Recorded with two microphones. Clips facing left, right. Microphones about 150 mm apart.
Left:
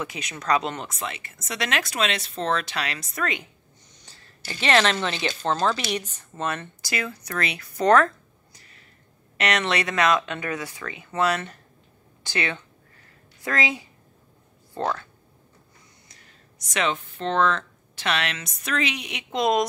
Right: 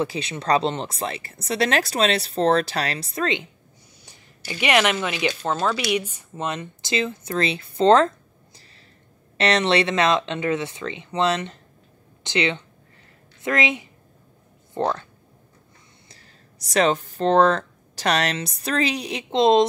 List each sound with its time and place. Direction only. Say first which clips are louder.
0.0 s speech: right 7 dB; 30° right (ahead or behind)
4.0 s speech: right 1 dB; 15° right (ahead or behind)
9.4 s speech: right 5 dB; 30° right (ahead or behind)
16.1 s speech: right 2 dB; 35° right (ahead or behind)